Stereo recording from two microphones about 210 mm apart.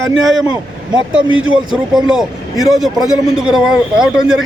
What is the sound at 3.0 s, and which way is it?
Speech, 20° left (ahead or behind).